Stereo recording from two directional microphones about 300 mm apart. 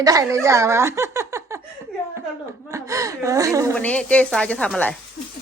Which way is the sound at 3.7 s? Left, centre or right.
Centre.